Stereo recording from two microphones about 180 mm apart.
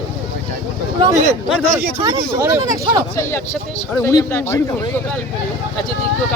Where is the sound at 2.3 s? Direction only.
15° right (ahead or behind).